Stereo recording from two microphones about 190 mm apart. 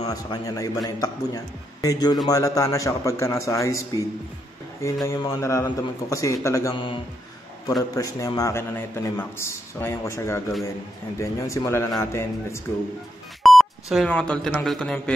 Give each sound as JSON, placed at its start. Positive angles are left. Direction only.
{"t": 0.0, "sound": "a man's voice", "side_deg": 20}
{"t": 5.0, "sound": "a man's voice", "side_deg": 15}
{"t": 13.4, "sound": "speech", "side_deg": 0}